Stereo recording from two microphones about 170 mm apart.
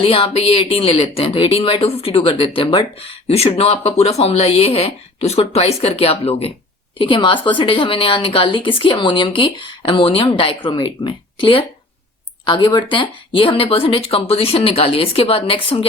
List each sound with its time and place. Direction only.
0.0 s a woman's voice: 35° left (ahead or behind)